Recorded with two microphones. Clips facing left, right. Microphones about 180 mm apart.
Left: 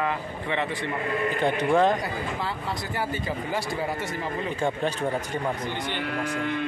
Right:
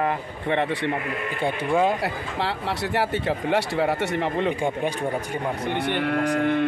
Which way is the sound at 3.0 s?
70° right (ahead or behind).